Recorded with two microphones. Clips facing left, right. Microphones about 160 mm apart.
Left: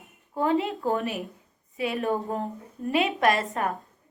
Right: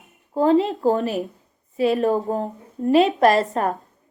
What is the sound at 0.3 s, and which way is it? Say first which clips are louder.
A woman's voice: right 7 dB; 35° right (ahead or behind).